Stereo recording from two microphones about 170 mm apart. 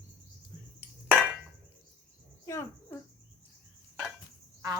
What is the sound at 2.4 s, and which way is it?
Cricket, 15° left (ahead or behind).